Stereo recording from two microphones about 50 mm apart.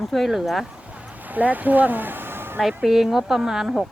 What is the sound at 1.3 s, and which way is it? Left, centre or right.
Speech, right.